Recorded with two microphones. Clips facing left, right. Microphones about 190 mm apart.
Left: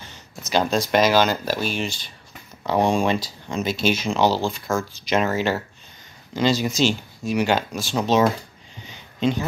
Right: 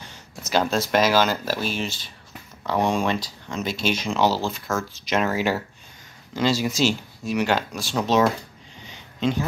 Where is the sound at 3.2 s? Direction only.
5° left (ahead or behind).